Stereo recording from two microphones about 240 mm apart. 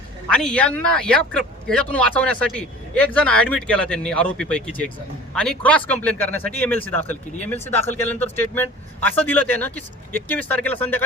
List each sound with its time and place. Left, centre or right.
0.3 s speech: centre